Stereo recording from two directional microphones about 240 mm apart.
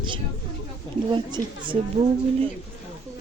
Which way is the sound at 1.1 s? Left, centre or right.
Centre.